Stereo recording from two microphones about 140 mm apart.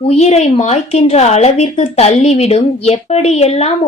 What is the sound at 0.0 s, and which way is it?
A woman's voice, 50° left (ahead or behind).